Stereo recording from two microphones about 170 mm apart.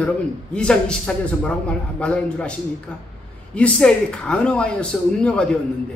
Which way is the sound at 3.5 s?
5° left (ahead or behind).